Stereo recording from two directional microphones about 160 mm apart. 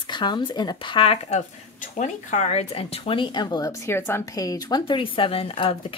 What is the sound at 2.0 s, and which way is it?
Speech, 50° left (ahead or behind).